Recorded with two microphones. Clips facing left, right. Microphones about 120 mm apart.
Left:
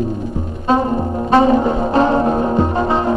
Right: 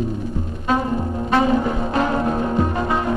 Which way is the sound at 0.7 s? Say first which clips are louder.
Left 5 dB; 35° left (ahead or behind).